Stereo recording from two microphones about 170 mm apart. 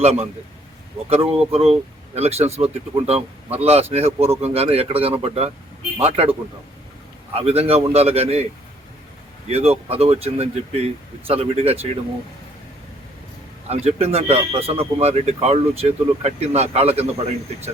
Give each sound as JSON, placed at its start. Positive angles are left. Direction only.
{"t": 0.0, "sound": "speech", "side_deg": -40}
{"t": 7.3, "sound": "speech", "side_deg": -35}
{"t": 9.5, "sound": "speech", "side_deg": -35}
{"t": 13.7, "sound": "speech", "side_deg": -40}